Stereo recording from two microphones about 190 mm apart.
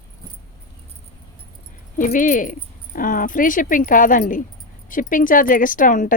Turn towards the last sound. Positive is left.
turn(degrees=45)  # may be behind; listen again after turning